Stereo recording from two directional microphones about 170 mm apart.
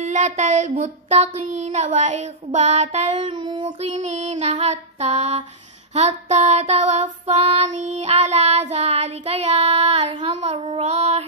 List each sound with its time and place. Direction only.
0.0 s child singing: 40° right (ahead or behind)
3.3 s child singing: 25° right (ahead or behind)
4.2 s child singing: 40° right (ahead or behind)